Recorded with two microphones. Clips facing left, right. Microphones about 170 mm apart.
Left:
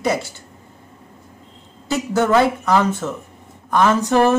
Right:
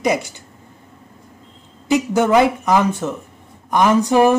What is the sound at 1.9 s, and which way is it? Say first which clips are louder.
Speech: right 2 dB; 15° right (ahead or behind).